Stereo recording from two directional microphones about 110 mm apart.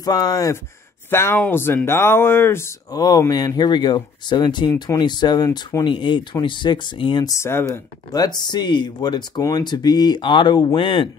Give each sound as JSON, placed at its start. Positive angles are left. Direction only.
{"t": 0.0, "sound": "speech", "side_deg": 35}
{"t": 1.1, "sound": "speech", "side_deg": 20}
{"t": 3.0, "sound": "speech", "side_deg": 40}
{"t": 7.2, "sound": "speech", "side_deg": 25}
{"t": 8.1, "sound": "speech", "side_deg": 40}